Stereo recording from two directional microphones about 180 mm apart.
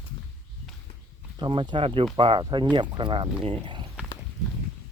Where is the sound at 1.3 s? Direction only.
25° right (ahead or behind).